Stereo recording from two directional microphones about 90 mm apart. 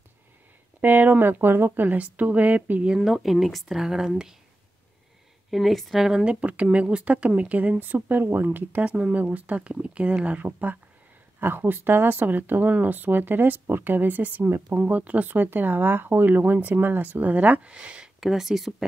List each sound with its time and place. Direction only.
0.7 s speech: 20° right (ahead or behind)
5.5 s speech: centre (ahead or behind)